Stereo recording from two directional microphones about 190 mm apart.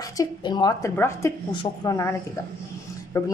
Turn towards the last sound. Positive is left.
turn(degrees=15)  # may be behind; listen again after turning